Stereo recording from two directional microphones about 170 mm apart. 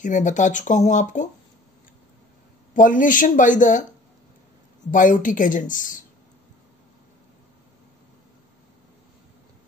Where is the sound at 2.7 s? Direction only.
50° left (ahead or behind).